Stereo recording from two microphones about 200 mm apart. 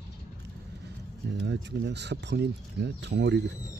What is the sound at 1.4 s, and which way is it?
Speech, 60° right (ahead or behind).